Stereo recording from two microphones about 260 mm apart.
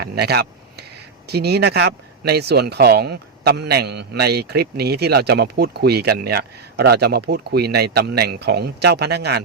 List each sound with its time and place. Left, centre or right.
0.0 s speech: right